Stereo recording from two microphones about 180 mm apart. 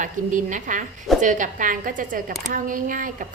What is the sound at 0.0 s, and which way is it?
A woman's voice, 45° right (ahead or behind).